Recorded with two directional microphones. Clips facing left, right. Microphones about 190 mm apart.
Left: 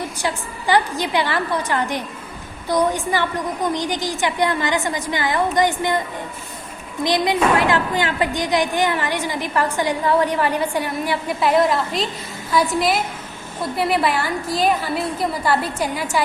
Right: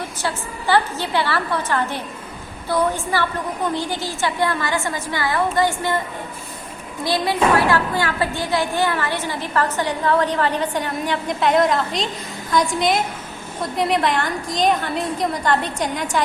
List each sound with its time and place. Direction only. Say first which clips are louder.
0.2 s a woman's voice: left 1 dB; 15° left (ahead or behind)
7.0 s a woman's voice: left 1 dB; 20° left (ahead or behind)